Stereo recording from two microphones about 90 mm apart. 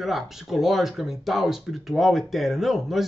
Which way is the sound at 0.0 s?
5° right (ahead or behind).